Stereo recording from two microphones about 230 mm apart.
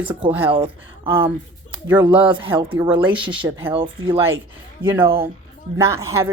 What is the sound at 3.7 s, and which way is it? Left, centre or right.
Speech, right.